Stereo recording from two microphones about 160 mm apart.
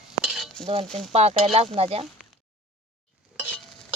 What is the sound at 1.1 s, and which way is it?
Speech, 40° right (ahead or behind).